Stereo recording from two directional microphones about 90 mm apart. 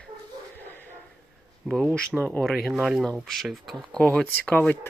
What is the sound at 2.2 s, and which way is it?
Speech, 20° left (ahead or behind).